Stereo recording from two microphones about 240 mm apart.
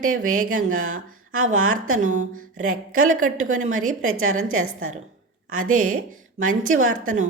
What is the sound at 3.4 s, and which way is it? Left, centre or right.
Speech, right.